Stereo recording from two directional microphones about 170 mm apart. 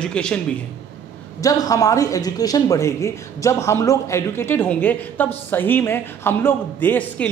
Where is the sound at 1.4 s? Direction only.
20° left (ahead or behind).